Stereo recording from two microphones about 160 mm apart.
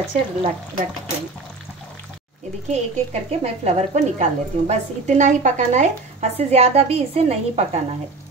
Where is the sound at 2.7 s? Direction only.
40° right (ahead or behind).